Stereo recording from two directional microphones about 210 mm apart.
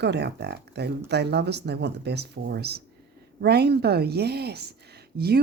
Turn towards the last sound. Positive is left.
turn(degrees=-50)  # may be behind; listen again after turning